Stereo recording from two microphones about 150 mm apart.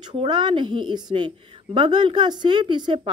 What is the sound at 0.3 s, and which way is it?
A woman's voice, 30° right (ahead or behind).